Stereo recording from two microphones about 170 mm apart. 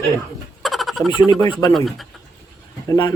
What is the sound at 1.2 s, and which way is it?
Speech, 25° left (ahead or behind).